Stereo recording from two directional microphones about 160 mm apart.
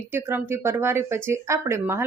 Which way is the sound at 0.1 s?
15° right (ahead or behind).